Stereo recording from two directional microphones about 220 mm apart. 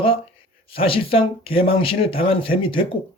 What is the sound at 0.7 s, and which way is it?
Speech, 25° left (ahead or behind).